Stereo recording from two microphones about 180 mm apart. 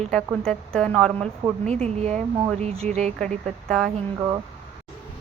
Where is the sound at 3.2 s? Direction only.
5° left (ahead or behind).